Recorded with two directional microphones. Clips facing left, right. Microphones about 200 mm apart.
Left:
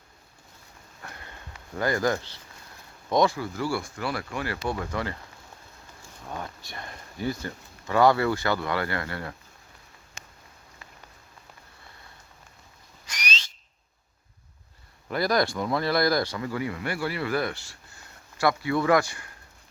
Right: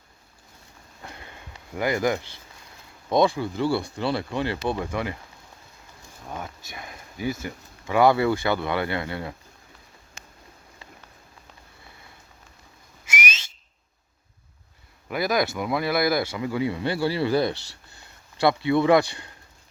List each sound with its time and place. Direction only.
1.0 s sniff: 20° right (ahead or behind)
1.7 s speech: 10° right (ahead or behind)
6.3 s speech: 5° right (ahead or behind); by 9.3 s 20° right (ahead or behind)
15.1 s speech: 5° right (ahead or behind)
16.5 s speech: 20° right (ahead or behind)